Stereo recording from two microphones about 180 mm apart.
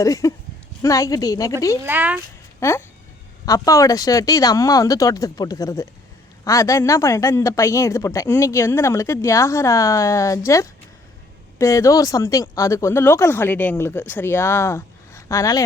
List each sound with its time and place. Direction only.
0.0 s speech: 20° left (ahead or behind)
1.8 s speech: 10° right (ahead or behind)
2.6 s speech: 15° left (ahead or behind)